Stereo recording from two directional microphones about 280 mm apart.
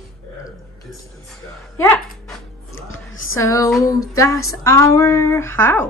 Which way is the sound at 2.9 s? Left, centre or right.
Left.